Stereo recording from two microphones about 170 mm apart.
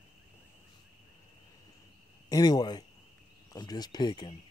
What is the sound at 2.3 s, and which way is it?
Speech, 20° left (ahead or behind).